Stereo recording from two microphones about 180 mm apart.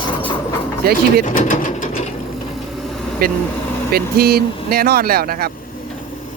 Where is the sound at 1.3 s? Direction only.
45° left (ahead or behind).